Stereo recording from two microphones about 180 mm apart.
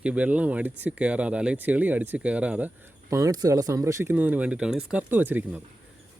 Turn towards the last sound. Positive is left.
turn(degrees=-10)  # may be behind; listen again after turning